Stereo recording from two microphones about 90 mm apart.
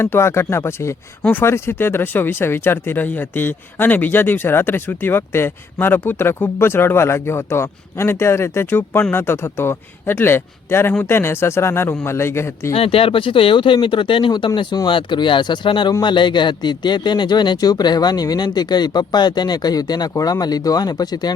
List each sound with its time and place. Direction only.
0.0 s speech: 30° left (ahead or behind)
12.7 s a man's voice: 90° left; by 21.3 s 50° left (ahead or behind)